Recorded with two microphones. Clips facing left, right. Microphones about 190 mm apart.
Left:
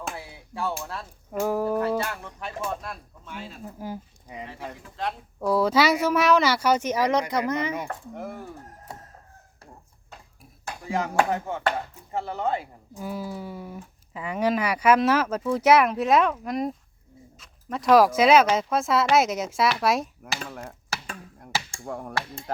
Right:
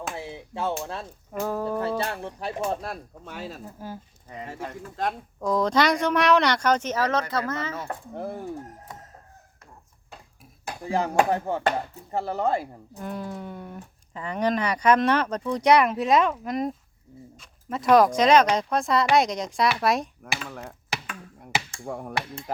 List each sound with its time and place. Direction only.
0.2 s chop: 25° right (ahead or behind)
1.3 s speech: 10° left (ahead or behind)
2.0 s speech: 30° right (ahead or behind)
3.8 s speech: 15° left (ahead or behind)
5.0 s speech: 45° right (ahead or behind)
5.4 s speech: 5° left (ahead or behind)
8.1 s speech: 30° right (ahead or behind)
8.9 s chicken: 30° left (ahead or behind)
10.8 s speech: 30° right (ahead or behind)
13.0 s speech: 5° left (ahead or behind)
21.8 s speech: 5° right (ahead or behind)